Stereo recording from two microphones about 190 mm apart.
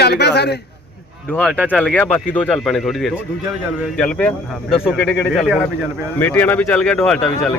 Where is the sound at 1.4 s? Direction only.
5° left (ahead or behind).